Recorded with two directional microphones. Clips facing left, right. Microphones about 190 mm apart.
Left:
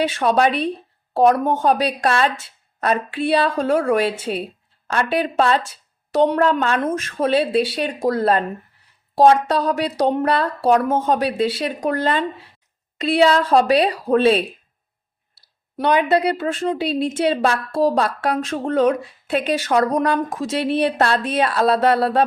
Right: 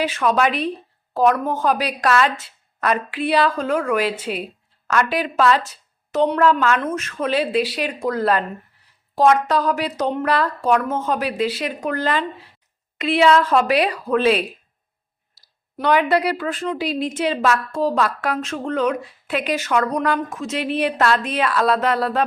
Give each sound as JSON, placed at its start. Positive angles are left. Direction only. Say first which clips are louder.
{"t": 0.0, "sound": "a woman's voice", "louder": "left 2 dB", "side_deg": 30}
{"t": 15.8, "sound": "a woman's voice", "louder": "left 1 dB", "side_deg": 20}